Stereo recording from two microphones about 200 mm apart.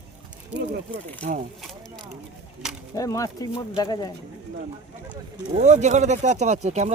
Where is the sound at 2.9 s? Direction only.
15° left (ahead or behind).